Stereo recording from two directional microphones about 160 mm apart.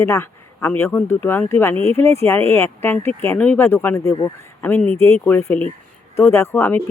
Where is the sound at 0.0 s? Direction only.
15° left (ahead or behind).